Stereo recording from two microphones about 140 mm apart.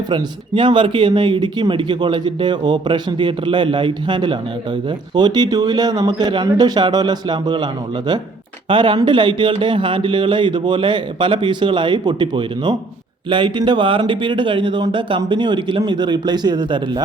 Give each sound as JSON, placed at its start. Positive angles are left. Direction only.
{"t": 0.1, "sound": "speech", "side_deg": -35}